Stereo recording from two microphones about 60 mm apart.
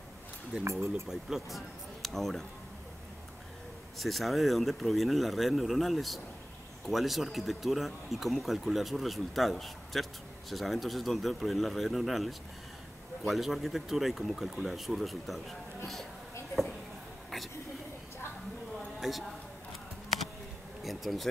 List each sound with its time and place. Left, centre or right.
0.7 s speech: right
1.0 s speech: centre
4.0 s speech: centre
18.9 s a woman's voice: centre
20.8 s speech: centre